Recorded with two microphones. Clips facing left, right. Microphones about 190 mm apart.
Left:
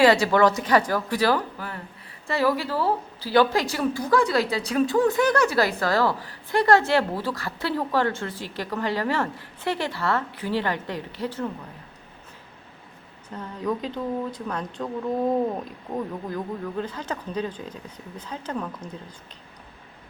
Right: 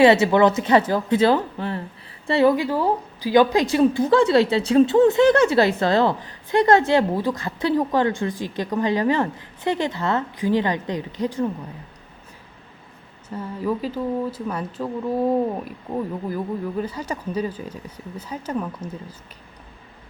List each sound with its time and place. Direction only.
0.0 s a woman's voice: 20° right (ahead or behind)
13.3 s speech: 5° right (ahead or behind)